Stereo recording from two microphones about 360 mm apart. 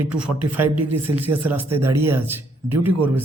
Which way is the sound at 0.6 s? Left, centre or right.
Right.